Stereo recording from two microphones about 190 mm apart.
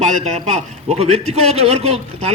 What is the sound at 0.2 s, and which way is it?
A man's voice, 35° right (ahead or behind).